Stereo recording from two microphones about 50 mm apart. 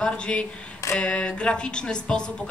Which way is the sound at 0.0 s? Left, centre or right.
Left.